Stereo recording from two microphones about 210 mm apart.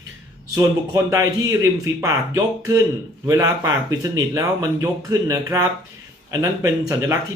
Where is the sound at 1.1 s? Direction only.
15° right (ahead or behind).